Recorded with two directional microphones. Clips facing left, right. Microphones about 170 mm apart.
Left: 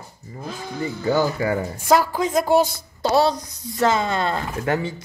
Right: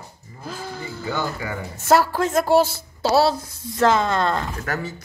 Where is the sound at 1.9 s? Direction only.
5° right (ahead or behind).